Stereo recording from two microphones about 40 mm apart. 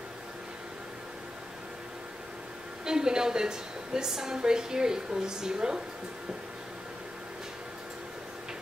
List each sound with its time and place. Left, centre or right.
2.8 s a woman's voice: centre